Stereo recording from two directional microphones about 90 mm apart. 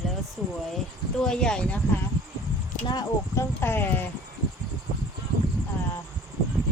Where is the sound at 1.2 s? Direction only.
10° left (ahead or behind).